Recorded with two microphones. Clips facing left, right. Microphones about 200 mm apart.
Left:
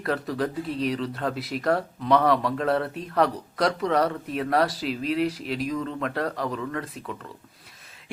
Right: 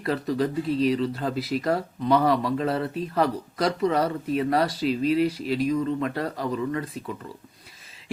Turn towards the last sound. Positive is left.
turn(degrees=0)  # may be behind; listen again after turning